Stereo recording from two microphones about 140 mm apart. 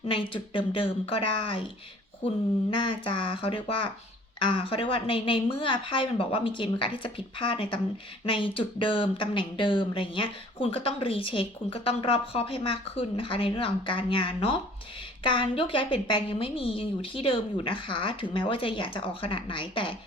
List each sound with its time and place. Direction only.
0.0 s speech: 35° left (ahead or behind)